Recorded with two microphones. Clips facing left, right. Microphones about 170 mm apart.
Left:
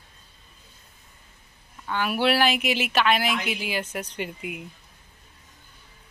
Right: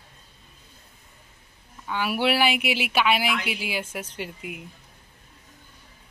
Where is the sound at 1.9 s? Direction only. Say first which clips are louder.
Left 1 dB; 10° right (ahead or behind).